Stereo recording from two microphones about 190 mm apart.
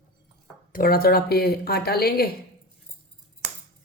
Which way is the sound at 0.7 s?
50° left (ahead or behind).